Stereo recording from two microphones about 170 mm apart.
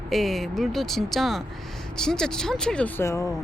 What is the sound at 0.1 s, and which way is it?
Speech, centre (ahead or behind).